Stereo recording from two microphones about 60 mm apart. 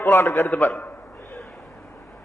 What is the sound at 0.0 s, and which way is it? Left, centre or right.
Speech, left.